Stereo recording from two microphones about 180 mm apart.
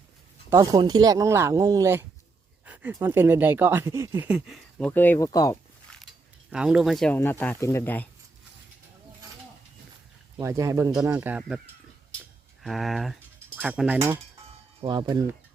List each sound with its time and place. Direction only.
0.5 s speech: 20° right (ahead or behind); by 4.9 s 5° right (ahead or behind)
4.9 s speech: 10° left (ahead or behind)
6.5 s speech: 5° right (ahead or behind); by 8.0 s 10° left (ahead or behind)
10.4 s speech: 15° right (ahead or behind)
12.6 s speech: centre (ahead or behind)
14.8 s speech: 25° right (ahead or behind)